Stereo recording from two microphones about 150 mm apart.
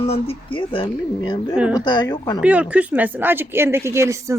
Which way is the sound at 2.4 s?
10° right (ahead or behind).